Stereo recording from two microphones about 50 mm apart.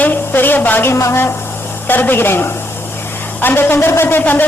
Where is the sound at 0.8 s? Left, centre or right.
Left.